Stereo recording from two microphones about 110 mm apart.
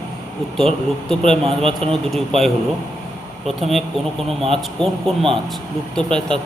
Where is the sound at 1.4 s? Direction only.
60° right (ahead or behind).